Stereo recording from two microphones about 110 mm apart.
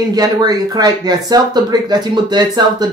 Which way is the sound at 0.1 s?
35° right (ahead or behind).